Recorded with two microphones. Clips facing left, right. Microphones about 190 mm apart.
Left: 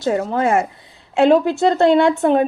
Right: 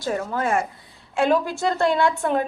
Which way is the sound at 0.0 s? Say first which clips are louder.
Left 7 dB; 25° left (ahead or behind).